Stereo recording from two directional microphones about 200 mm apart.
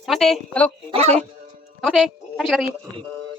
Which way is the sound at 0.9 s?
35° right (ahead or behind).